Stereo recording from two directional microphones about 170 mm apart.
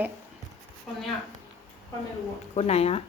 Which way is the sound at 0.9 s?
5° left (ahead or behind).